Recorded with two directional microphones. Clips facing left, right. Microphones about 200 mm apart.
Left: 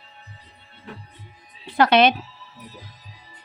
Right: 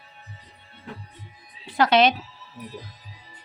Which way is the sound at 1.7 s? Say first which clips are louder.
Left 2 dB; 60° left (ahead or behind).